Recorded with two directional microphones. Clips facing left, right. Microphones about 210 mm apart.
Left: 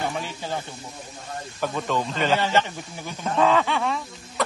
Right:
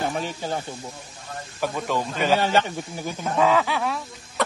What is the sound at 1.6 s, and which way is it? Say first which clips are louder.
A man's voice: even; 10° right (ahead or behind).